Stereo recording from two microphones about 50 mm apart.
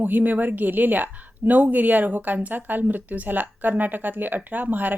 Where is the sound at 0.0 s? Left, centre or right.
Right.